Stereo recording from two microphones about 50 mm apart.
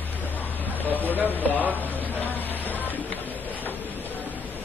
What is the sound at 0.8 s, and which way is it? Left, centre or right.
Speech, left.